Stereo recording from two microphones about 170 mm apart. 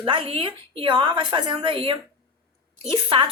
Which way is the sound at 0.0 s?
30° right (ahead or behind).